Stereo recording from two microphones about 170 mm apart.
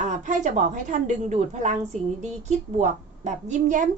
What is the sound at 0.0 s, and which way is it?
A woman's voice, 45° right (ahead or behind).